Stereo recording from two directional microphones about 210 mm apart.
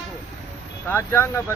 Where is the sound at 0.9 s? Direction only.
10° left (ahead or behind).